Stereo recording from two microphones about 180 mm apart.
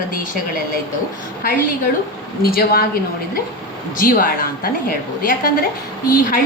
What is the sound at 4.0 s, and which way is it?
A woman's voice, 50° left (ahead or behind).